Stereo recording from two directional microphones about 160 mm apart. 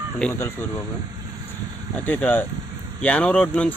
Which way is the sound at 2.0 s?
10° left (ahead or behind).